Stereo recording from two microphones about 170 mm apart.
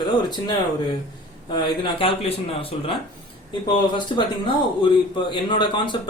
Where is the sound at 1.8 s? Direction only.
30° left (ahead or behind).